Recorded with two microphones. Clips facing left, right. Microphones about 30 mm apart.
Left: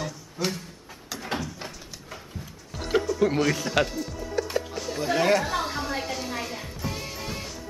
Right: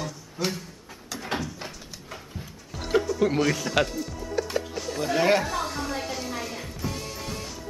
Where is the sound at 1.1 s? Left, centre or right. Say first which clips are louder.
Right 1 dB; centre.